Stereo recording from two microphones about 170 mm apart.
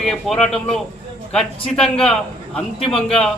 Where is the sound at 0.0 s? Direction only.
Centre (ahead or behind).